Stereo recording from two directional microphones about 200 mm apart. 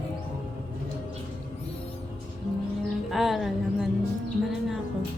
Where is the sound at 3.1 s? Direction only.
Centre (ahead or behind).